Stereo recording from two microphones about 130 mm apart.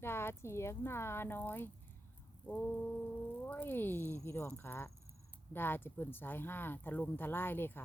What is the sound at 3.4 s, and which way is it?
Speech, 15° left (ahead or behind).